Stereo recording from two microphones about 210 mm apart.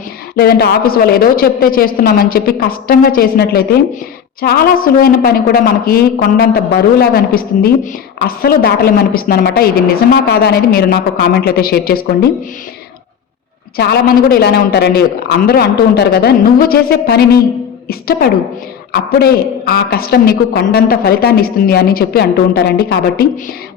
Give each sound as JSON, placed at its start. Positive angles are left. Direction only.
{"t": 0.3, "sound": "a woman's voice", "side_deg": 45}
{"t": 13.7, "sound": "a woman's voice", "side_deg": 50}